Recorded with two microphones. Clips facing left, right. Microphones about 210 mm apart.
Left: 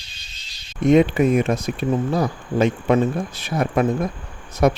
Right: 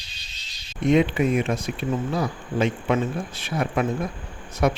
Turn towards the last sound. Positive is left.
turn(degrees=40)  # may be behind; listen again after turning